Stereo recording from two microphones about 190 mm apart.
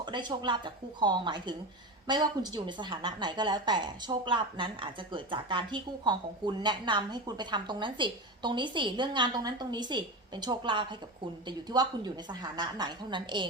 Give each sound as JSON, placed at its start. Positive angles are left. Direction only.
{"t": 0.0, "sound": "a woman's voice", "side_deg": -25}